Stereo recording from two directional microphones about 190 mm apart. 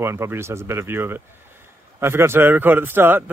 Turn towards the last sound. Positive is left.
turn(degrees=-10)  # may be behind; listen again after turning